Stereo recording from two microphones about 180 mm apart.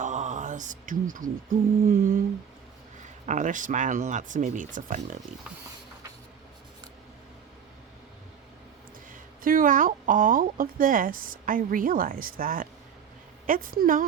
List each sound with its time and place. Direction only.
0.0 s a sound: 40° right (ahead or behind)
1.9 s speech: 50° right (ahead or behind)
3.2 s speech: 45° right (ahead or behind)
9.4 s speech: 50° right (ahead or behind)